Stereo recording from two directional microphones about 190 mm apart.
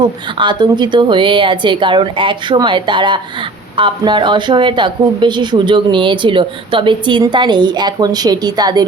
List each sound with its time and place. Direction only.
0.0 s a woman's voice: 25° right (ahead or behind)